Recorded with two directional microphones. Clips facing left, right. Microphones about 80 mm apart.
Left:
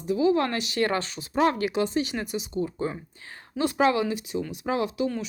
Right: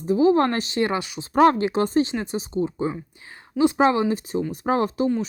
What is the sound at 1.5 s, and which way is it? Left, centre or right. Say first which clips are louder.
Speech: right 4 dB; right.